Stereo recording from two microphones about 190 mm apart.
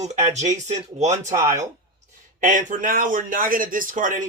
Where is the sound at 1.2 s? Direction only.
15° right (ahead or behind).